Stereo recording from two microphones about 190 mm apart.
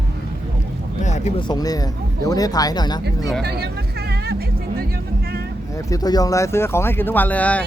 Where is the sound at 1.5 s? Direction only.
20° left (ahead or behind).